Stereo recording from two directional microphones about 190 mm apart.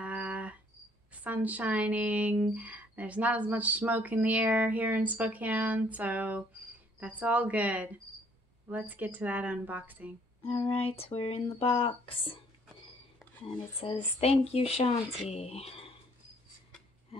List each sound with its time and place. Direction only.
0.0 s cricket: 5° right (ahead or behind)
1.1 s speech: 10° right (ahead or behind)
10.4 s speech: 30° left (ahead or behind)
13.5 s speech: 30° left (ahead or behind)